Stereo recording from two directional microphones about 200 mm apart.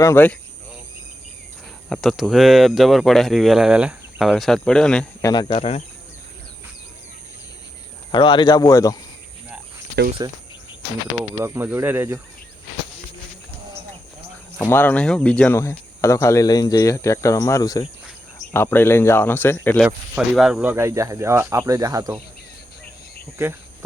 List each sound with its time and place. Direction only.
0.0 s speech: 10° left (ahead or behind)
1.9 s speech: centre (ahead or behind)
5.2 s speech: 20° left (ahead or behind)
8.1 s speech: 25° left (ahead or behind)
10.2 s speech: 20° right (ahead or behind)
14.6 s speech: 10° left (ahead or behind)
19.8 s speech: centre (ahead or behind)